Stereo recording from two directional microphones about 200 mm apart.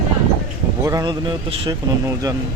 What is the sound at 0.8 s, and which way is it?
Speech, 20° right (ahead or behind).